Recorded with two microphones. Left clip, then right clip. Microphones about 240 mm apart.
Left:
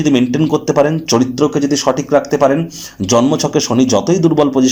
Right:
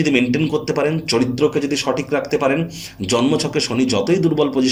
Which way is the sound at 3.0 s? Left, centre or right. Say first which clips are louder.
Left 5 dB; left.